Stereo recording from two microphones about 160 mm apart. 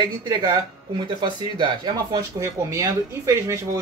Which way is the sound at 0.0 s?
25° right (ahead or behind).